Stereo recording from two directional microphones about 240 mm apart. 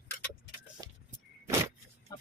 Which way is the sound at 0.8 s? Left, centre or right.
Centre.